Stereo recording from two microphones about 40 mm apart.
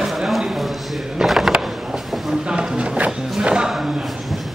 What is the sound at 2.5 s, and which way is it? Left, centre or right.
Music, right.